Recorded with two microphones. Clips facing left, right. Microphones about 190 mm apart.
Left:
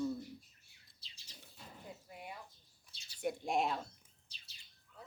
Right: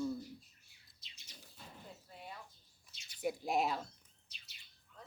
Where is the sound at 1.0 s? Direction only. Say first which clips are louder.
Right 1 dB; 30° left (ahead or behind).